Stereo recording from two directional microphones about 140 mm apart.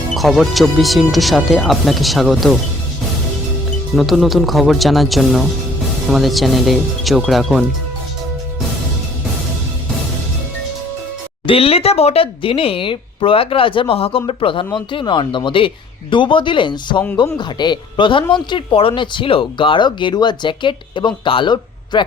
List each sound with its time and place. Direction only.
0.1 s speech: centre (ahead or behind)
3.9 s speech: centre (ahead or behind)
11.4 s speech: 45° left (ahead or behind)